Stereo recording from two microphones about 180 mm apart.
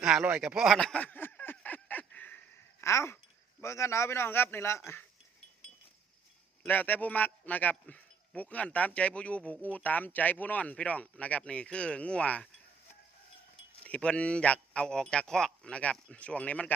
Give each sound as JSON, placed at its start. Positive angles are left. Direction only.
{"t": 0.0, "sound": "a sound", "side_deg": -5}
{"t": 2.8, "sound": "speech", "side_deg": 15}
{"t": 6.6, "sound": "speech", "side_deg": 10}
{"t": 13.8, "sound": "speech", "side_deg": 5}